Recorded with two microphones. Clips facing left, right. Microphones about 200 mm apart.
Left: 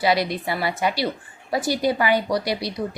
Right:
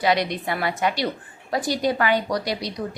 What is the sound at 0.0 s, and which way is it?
A woman's voice, 5° left (ahead or behind).